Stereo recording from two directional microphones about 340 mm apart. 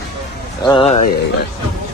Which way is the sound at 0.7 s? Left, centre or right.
Centre.